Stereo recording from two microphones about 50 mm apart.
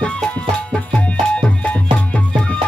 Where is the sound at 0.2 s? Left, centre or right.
Centre.